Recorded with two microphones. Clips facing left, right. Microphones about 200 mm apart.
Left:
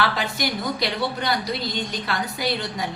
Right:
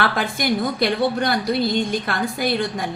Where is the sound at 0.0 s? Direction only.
50° right (ahead or behind).